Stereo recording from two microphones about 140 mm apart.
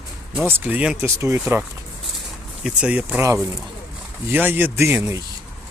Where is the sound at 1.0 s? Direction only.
20° right (ahead or behind).